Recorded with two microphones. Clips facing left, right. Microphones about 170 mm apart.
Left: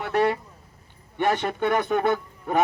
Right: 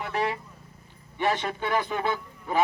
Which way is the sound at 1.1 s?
60° left (ahead or behind).